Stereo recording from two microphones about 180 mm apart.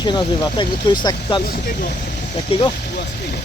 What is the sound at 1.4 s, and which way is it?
Speech, 50° left (ahead or behind).